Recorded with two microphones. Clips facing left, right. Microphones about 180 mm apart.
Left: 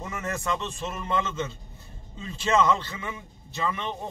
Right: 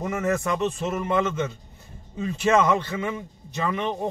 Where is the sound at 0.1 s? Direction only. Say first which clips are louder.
Right 5 dB; 20° right (ahead or behind).